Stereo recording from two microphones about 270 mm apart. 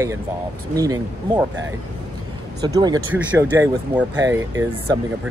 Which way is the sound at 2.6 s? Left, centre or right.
Centre.